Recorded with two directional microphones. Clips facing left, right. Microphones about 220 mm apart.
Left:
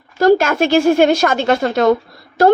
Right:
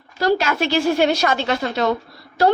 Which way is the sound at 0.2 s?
50° left (ahead or behind).